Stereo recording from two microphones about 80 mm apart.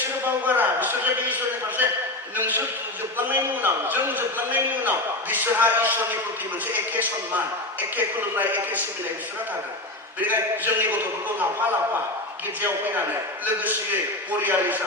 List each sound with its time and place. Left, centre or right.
0.4 s a man's voice: right
10.2 s a man's voice: right